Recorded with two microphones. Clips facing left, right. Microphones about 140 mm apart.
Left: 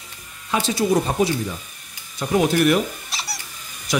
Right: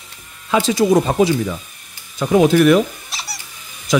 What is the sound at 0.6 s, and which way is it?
Speech, 90° right.